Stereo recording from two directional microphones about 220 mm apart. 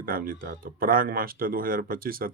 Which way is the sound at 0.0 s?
40° right (ahead or behind).